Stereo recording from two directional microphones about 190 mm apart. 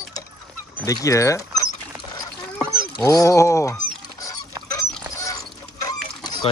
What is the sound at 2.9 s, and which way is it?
Speech, 15° left (ahead or behind).